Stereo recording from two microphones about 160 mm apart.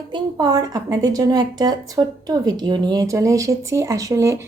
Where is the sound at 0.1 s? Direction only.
25° right (ahead or behind).